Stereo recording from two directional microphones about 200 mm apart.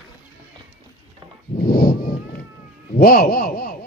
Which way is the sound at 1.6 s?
45° left (ahead or behind).